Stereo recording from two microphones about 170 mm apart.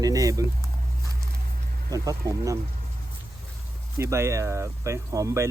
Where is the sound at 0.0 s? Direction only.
20° right (ahead or behind).